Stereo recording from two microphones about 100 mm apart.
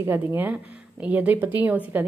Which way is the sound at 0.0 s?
20° right (ahead or behind).